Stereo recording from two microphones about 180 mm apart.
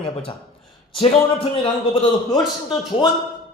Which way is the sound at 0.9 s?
30° left (ahead or behind).